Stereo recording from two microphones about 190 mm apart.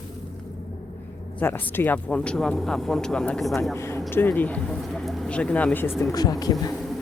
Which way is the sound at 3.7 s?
15° left (ahead or behind).